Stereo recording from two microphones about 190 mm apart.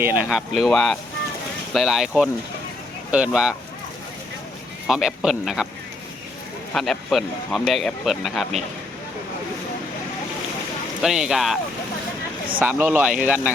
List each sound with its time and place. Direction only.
0.0 s speech: 10° right (ahead or behind)
4.9 s speech: 5° right (ahead or behind)
6.7 s speech: centre (ahead or behind)
11.0 s speech: centre (ahead or behind)